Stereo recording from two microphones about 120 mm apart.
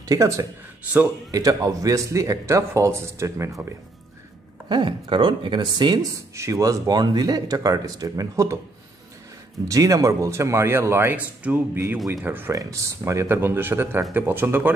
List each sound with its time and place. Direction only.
0.0 s speech: 30° right (ahead or behind)
4.6 s speech: 40° right (ahead or behind)
6.3 s speech: 25° right (ahead or behind)
9.7 s speech: 30° right (ahead or behind)